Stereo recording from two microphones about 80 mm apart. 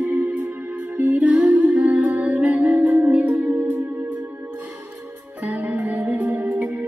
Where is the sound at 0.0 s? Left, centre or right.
Right.